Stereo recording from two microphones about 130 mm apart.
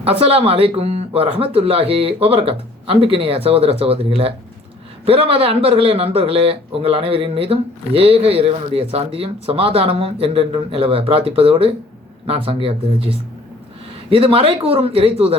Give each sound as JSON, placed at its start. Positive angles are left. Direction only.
{"t": 0.0, "sound": "speech", "side_deg": -50}